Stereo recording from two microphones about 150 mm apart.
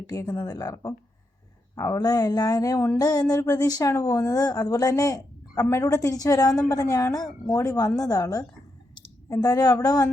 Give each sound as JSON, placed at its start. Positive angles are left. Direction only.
{"t": 0.1, "sound": "speech", "side_deg": 25}